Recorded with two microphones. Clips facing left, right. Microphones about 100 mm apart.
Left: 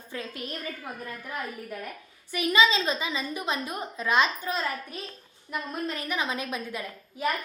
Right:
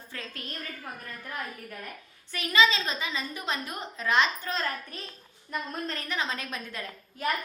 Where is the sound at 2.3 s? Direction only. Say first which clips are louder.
Left 2 dB; 15° left (ahead or behind).